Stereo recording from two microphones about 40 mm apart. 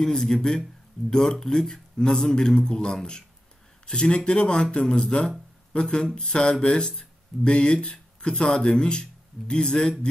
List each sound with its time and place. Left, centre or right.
0.0 s a man's voice: centre